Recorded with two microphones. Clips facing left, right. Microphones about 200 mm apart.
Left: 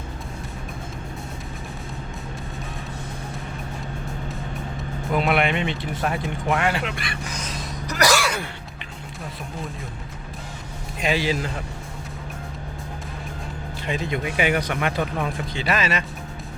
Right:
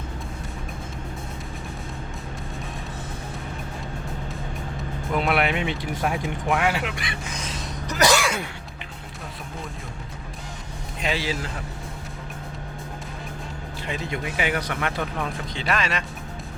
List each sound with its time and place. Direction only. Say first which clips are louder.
5.1 s speech: left 2 dB; centre (ahead or behind); by 7.2 s 20° right (ahead or behind)
7.9 s music: even; 20° right (ahead or behind)
11.0 s speech: left 4 dB; 15° left (ahead or behind)
14.3 s speech: left 4 dB; 15° left (ahead or behind)
15.5 s speech: left 2 dB; 5° left (ahead or behind)